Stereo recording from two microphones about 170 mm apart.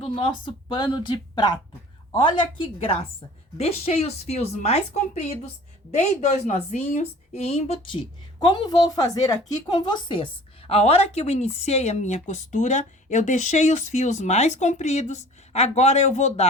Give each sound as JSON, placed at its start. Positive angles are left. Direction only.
{"t": 0.0, "sound": "a woman's voice", "side_deg": 30}
{"t": 8.4, "sound": "speech", "side_deg": 25}